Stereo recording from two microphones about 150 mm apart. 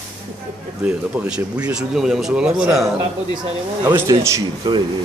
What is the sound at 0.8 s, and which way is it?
Speech, 10° right (ahead or behind).